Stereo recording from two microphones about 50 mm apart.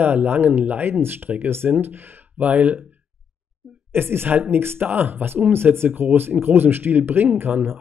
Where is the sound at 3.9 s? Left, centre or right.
Right.